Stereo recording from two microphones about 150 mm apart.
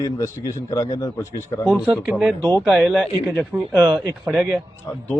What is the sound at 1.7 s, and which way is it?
Speech, 5° left (ahead or behind).